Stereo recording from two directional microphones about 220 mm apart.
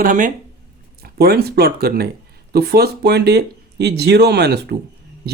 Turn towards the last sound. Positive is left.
turn(degrees=-50)  # may be behind; listen again after turning